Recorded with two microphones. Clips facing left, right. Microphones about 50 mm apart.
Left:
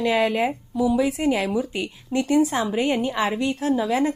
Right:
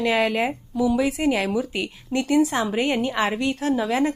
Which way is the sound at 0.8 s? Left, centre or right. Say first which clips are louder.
Even; centre.